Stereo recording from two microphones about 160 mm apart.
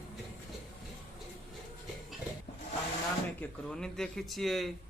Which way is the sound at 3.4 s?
5° left (ahead or behind).